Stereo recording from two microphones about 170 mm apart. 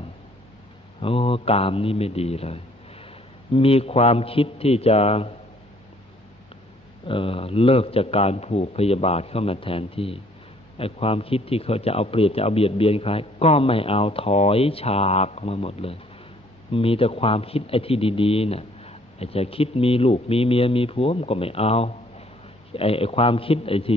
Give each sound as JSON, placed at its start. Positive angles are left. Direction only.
{"t": 1.0, "sound": "a man's voice", "side_deg": 35}
{"t": 7.1, "sound": "a man's voice", "side_deg": 30}